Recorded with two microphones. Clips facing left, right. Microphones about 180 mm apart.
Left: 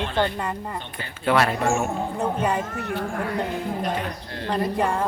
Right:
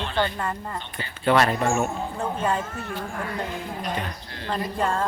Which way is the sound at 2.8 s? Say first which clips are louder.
Left 4 dB; 70° left (ahead or behind).